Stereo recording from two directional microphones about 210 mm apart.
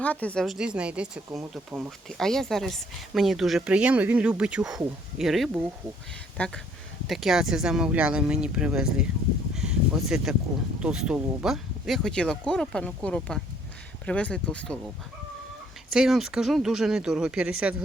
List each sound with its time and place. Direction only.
0.0 s speech: 5° left (ahead or behind)
9.6 s a sound: 5° right (ahead or behind)
10.8 s speech: 5° right (ahead or behind)
15.9 s speech: centre (ahead or behind)